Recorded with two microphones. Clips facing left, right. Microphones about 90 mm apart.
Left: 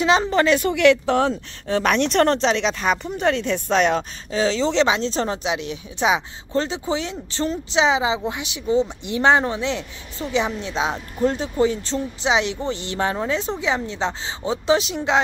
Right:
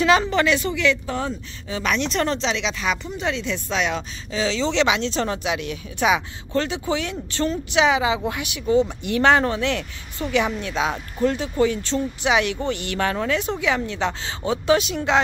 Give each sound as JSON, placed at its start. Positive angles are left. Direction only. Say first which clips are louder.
{"t": 0.0, "sound": "a woman's voice", "louder": "even", "side_deg": 25}
{"t": 1.8, "sound": "speech", "louder": "left 5 dB", "side_deg": 55}